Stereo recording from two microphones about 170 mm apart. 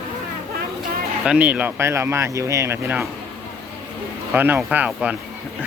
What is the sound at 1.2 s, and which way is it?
Speech, 5° right (ahead or behind).